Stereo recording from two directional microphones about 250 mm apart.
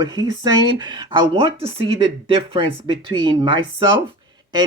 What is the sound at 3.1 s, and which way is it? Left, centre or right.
Speech, centre.